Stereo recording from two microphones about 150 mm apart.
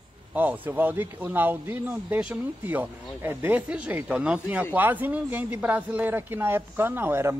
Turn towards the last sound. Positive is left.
turn(degrees=-15)  # may be behind; listen again after turning